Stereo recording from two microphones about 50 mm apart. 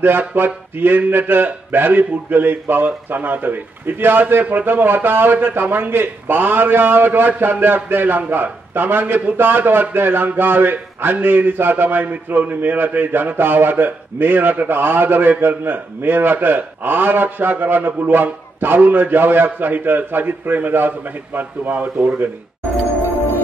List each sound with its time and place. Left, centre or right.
0.4 s a man's voice: right